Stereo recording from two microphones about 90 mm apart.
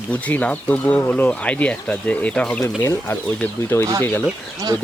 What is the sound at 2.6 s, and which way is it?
Speech, 25° left (ahead or behind).